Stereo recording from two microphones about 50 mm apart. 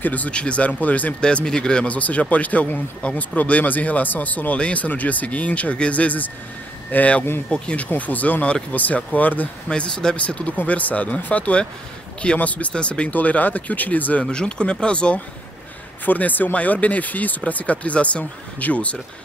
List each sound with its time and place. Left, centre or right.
0.0 s speech: left
1.2 s speech: centre; by 9.5 s left
9.7 s speech: centre
13.1 s speech: left
14.2 s speech: centre
16.1 s speech: left